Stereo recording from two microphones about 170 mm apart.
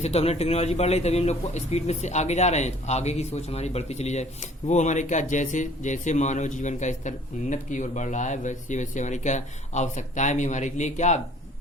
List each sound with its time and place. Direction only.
0.0 s speech: 40° left (ahead or behind)